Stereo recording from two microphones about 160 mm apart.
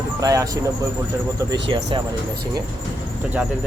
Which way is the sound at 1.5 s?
30° right (ahead or behind).